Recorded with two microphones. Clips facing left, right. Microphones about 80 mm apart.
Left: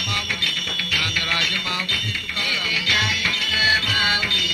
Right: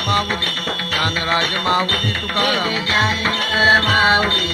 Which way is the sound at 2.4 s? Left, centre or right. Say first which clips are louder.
Right 8 dB; right.